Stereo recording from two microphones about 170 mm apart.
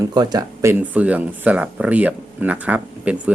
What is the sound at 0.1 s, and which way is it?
Speech, 25° right (ahead or behind).